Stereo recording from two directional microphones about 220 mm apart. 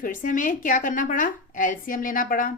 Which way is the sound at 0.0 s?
35° left (ahead or behind).